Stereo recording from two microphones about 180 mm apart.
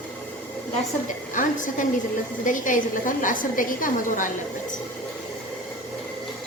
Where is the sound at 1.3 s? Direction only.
45° left (ahead or behind).